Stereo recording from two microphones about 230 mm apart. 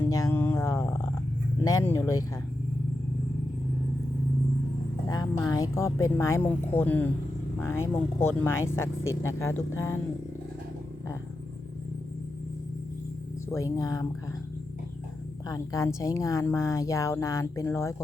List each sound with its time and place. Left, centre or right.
0.0 s a sound: centre
1.6 s speech: centre
5.0 s music: centre
5.4 s speech: centre
13.7 s speech: centre
15.4 s speech: centre